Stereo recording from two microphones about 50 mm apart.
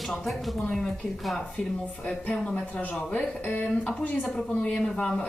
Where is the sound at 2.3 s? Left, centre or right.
Centre.